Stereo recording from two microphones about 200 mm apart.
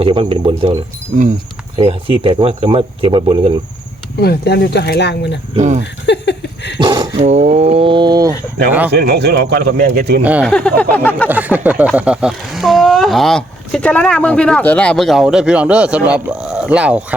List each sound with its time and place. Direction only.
0.0 s speech: 25° right (ahead or behind)
1.8 s speech: 30° right (ahead or behind)
4.2 s speech: 55° left (ahead or behind)
5.5 s speech: 35° right (ahead or behind)
5.8 s a sound: 60° left (ahead or behind)
6.7 s dog: 25° right (ahead or behind)
7.2 s speech: 35° right (ahead or behind)
8.9 s speech: 55° right (ahead or behind)
10.2 s speech: 5° right (ahead or behind)
10.5 s a sound: 5° left (ahead or behind)
11.3 s speech: 10° right (ahead or behind)